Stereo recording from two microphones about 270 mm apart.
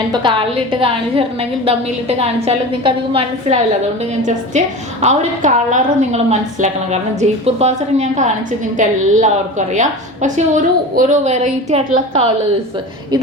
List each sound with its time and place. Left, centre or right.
0.1 s a woman's voice: centre